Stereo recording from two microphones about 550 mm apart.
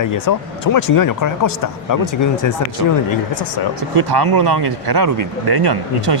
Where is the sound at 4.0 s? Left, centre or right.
Right.